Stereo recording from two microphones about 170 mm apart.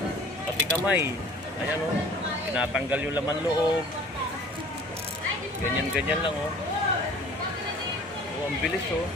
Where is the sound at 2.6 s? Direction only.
10° right (ahead or behind).